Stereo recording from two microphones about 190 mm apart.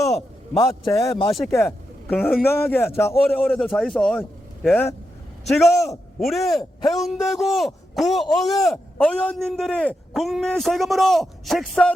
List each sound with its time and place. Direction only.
0.6 s a man's voice: 15° left (ahead or behind)
1.3 s a man's voice: centre (ahead or behind)
1.5 s a man's voice: 10° left (ahead or behind)
6.1 s a man's voice: centre (ahead or behind)